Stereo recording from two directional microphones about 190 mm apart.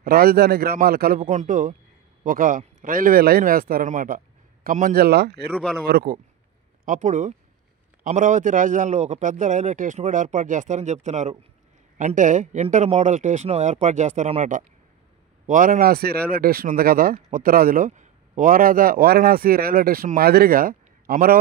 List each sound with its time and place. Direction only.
0.0 s speech: 50° right (ahead or behind)
5.5 s speech: centre (ahead or behind)
5.9 s speech: 55° right (ahead or behind)
6.8 s a man's voice: 40° right (ahead or behind)